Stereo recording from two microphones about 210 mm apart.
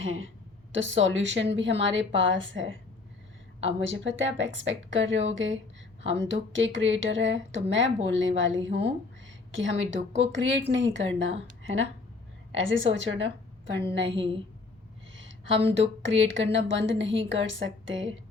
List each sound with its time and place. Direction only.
0.0 s a woman's voice: 65° right (ahead or behind)
14.1 s a woman's voice: 25° right (ahead or behind)
15.1 s a sound: 60° right (ahead or behind)
16.0 s a woman's voice: 60° right (ahead or behind)